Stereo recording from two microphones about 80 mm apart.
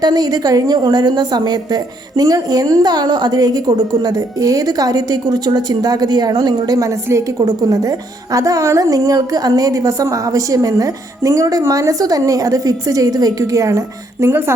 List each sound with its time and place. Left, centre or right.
0.0 s a woman's voice: right